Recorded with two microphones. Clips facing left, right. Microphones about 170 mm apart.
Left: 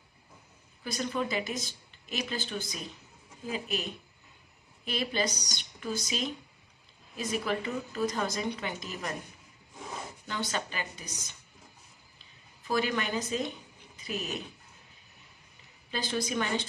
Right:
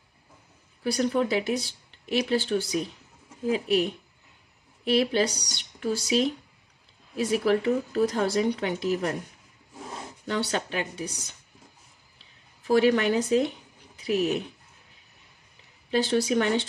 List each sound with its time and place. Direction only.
0.8 s speech: 70° right (ahead or behind)
10.2 s speech: 75° right (ahead or behind)
12.6 s speech: 75° right (ahead or behind)
15.9 s speech: 75° right (ahead or behind)